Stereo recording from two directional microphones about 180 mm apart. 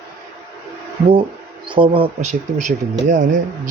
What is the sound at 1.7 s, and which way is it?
Speech, 30° right (ahead or behind).